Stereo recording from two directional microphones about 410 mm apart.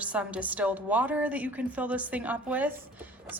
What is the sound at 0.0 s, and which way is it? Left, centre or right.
A woman's voice, centre.